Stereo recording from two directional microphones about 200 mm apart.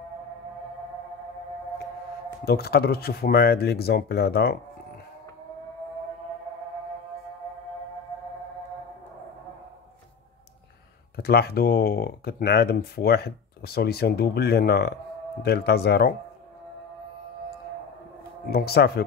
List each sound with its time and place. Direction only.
2.4 s speech: 50° left (ahead or behind)
11.2 s speech: 50° left (ahead or behind)
18.5 s speech: 50° left (ahead or behind)